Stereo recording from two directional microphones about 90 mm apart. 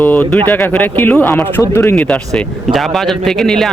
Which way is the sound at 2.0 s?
10° left (ahead or behind).